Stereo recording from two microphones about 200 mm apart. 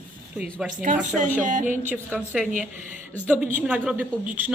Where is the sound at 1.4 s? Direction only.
40° right (ahead or behind).